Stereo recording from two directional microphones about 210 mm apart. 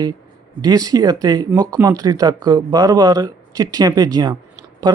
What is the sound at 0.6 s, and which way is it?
Speech, 15° right (ahead or behind).